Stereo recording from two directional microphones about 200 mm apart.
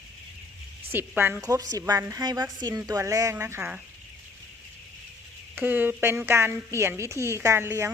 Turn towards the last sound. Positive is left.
turn(degrees=-15)  # may be behind; listen again after turning